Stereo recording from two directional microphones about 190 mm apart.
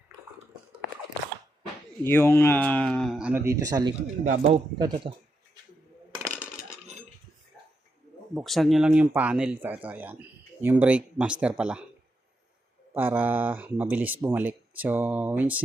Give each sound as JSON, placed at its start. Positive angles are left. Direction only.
{"t": 2.0, "sound": "speech", "side_deg": 10}
{"t": 4.2, "sound": "speech", "side_deg": -40}
{"t": 4.5, "sound": "speech", "side_deg": -25}
{"t": 8.4, "sound": "speech", "side_deg": 0}
{"t": 12.9, "sound": "speech", "side_deg": -10}